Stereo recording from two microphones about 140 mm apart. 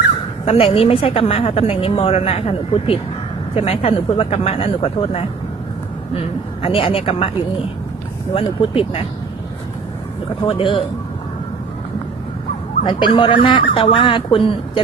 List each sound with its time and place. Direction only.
0.4 s a woman's voice: 40° left (ahead or behind)
8.3 s a woman's voice: 45° left (ahead or behind)
10.4 s speech: 40° left (ahead or behind)
12.8 s speech: 35° left (ahead or behind)